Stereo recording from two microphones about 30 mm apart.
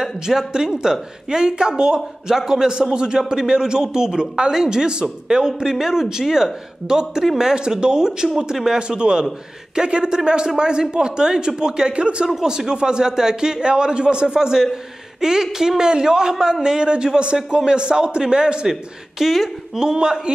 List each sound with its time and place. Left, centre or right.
0.0 s a man's voice: centre; by 12.3 s right
12.4 s speech: right
18.7 s speech: centre
19.8 s speech: right